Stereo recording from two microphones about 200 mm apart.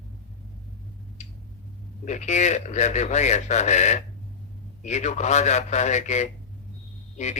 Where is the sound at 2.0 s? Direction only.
35° left (ahead or behind).